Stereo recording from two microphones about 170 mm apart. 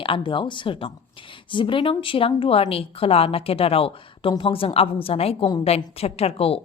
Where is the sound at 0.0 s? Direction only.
30° left (ahead or behind).